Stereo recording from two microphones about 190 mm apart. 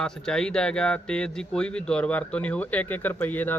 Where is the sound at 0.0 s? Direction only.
5° left (ahead or behind).